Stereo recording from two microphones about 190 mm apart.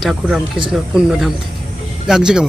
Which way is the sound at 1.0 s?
5° right (ahead or behind).